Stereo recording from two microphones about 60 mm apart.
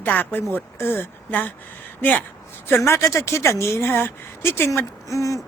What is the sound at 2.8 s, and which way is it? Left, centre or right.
Speech, left.